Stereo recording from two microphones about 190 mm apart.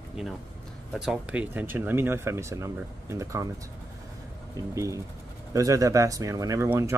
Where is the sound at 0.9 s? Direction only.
5° right (ahead or behind).